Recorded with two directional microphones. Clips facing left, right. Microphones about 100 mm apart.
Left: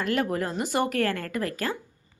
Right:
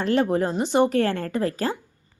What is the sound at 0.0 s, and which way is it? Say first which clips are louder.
A woman's voice: right 5 dB; 30° right (ahead or behind).